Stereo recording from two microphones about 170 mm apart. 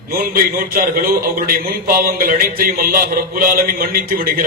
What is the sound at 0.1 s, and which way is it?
A man's voice, 55° right (ahead or behind).